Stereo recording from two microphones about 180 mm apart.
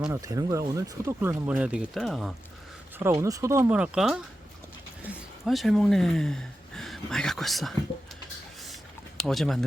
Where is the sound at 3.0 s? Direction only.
15° right (ahead or behind).